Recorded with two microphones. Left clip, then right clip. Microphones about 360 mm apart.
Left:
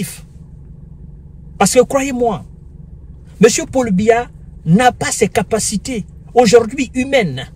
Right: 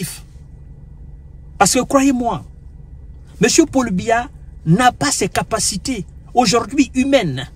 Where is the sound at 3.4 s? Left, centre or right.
Centre.